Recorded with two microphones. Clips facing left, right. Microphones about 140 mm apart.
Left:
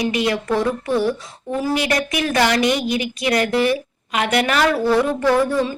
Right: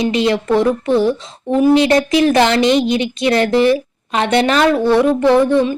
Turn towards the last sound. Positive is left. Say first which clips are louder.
# right 5 dB
turn(degrees=-20)  # may be behind; listen again after turning